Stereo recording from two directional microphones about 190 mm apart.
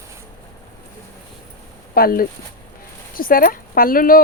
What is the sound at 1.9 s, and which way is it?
Speech, 50° left (ahead or behind).